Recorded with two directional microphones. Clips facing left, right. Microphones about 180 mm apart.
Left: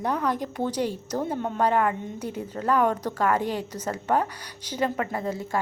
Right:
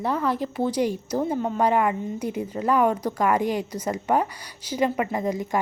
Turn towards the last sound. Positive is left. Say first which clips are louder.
# right 3 dB
turn(degrees=-15)  # may be behind; listen again after turning